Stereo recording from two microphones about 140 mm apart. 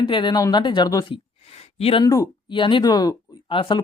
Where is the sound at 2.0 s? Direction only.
25° left (ahead or behind).